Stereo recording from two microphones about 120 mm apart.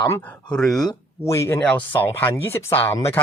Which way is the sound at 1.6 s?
10° left (ahead or behind).